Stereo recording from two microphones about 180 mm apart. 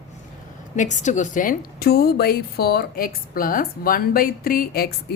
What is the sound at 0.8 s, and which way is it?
A woman's voice, 40° left (ahead or behind).